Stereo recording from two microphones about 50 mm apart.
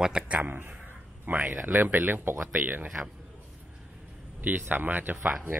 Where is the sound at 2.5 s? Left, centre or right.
Right.